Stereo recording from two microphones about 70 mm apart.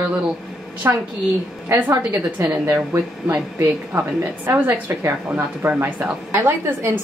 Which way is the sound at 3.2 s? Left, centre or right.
Right.